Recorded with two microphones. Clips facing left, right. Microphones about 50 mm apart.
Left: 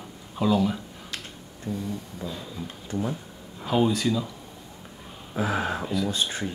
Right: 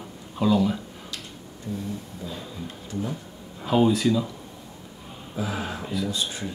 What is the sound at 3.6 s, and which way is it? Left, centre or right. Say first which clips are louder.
Speech: right 3 dB; centre.